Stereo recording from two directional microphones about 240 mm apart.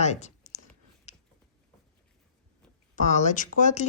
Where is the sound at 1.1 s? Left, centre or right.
Left.